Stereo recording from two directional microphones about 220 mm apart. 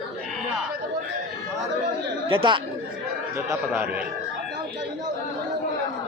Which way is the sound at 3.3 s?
10° right (ahead or behind).